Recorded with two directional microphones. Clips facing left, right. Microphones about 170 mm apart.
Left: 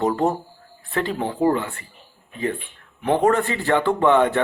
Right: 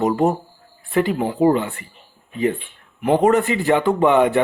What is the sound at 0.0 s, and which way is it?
Speech, 15° right (ahead or behind).